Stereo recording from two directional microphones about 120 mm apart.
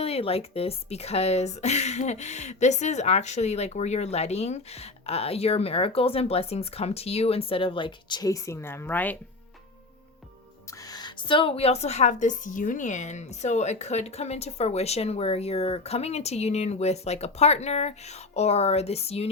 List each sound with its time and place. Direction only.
0.0 s speech: 55° left (ahead or behind); by 9.1 s 15° left (ahead or behind)
10.8 s speech: 35° left (ahead or behind); by 19.3 s 60° left (ahead or behind)